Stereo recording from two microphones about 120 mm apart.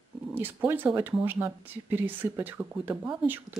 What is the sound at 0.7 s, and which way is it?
Speech, 15° right (ahead or behind).